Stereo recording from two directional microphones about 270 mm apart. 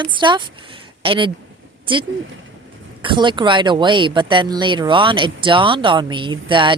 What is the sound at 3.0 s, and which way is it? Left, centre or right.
Speech, centre.